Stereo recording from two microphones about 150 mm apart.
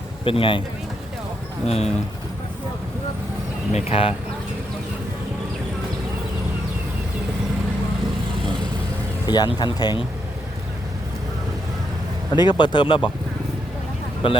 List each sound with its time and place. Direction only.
0.3 s speech: 35° left (ahead or behind)
1.6 s speech: 45° left (ahead or behind)
3.7 s speech: 45° left (ahead or behind)
9.2 s speech: 30° left (ahead or behind)
12.3 s speech: 30° left (ahead or behind)
14.2 s speech: 35° left (ahead or behind)